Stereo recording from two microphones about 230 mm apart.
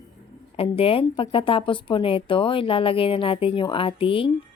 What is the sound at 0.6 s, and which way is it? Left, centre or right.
Speech, left.